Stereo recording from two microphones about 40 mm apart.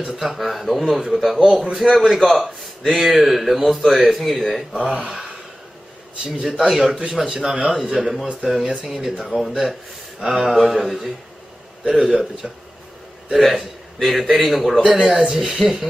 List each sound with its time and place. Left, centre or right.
0.2 s a man's voice: centre
5.1 s a sound: centre
6.9 s a man's voice: centre
8.5 s speech: right
8.8 s a man's voice: centre
11.9 s a man's voice: centre
14.9 s speech: centre